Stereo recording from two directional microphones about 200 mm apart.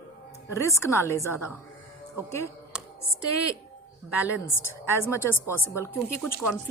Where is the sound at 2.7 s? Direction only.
5° right (ahead or behind).